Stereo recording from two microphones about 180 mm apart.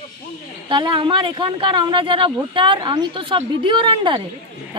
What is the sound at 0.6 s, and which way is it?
Speech, 25° right (ahead or behind).